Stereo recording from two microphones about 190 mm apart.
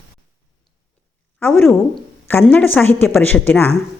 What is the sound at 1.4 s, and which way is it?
A woman's voice, 10° left (ahead or behind).